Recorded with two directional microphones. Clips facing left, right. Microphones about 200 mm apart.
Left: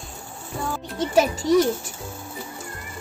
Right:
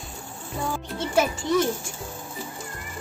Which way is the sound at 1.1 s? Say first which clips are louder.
Left 3 dB; 40° left (ahead or behind).